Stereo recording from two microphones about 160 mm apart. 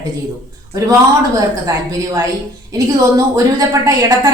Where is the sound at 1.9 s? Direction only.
20° right (ahead or behind).